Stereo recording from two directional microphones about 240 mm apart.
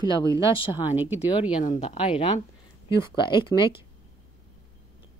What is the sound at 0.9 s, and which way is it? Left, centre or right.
Speech, centre.